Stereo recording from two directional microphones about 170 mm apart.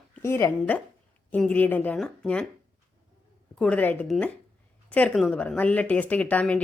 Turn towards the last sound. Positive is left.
turn(degrees=5)  # may be behind; listen again after turning